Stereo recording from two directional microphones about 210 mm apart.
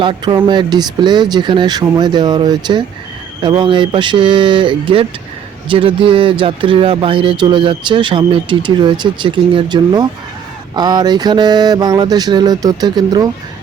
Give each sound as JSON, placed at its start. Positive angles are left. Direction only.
{"t": 0.0, "sound": "speech", "side_deg": -20}